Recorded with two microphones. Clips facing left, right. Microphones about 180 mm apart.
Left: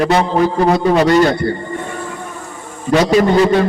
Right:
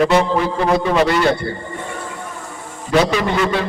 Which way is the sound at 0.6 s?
40° left (ahead or behind).